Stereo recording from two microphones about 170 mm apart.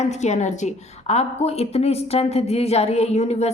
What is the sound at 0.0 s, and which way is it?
A woman's voice, 40° left (ahead or behind).